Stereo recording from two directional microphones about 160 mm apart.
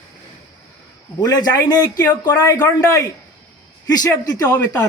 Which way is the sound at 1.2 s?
25° left (ahead or behind).